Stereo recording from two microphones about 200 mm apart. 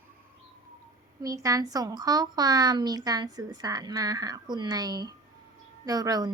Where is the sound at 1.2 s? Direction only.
15° right (ahead or behind).